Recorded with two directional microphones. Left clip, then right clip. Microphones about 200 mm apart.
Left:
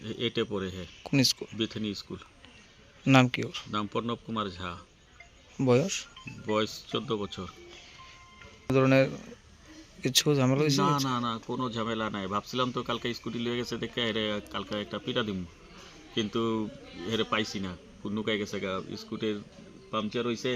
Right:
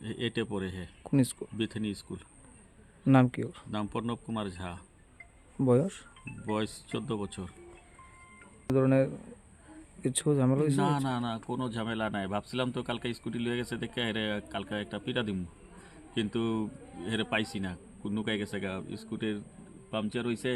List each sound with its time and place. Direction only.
0.0 s speech: 25° right (ahead or behind)
1.0 s speech: 10° right (ahead or behind)
1.6 s a man's voice: 25° right (ahead or behind)
3.1 s a man's voice: 10° right (ahead or behind)
5.5 s speech: 10° right (ahead or behind)
6.5 s a man's voice: 20° right (ahead or behind)
8.6 s speech: 5° right (ahead or behind)
11.1 s a man's voice: 25° right (ahead or behind)